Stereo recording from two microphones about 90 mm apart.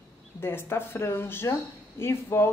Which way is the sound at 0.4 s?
25° left (ahead or behind).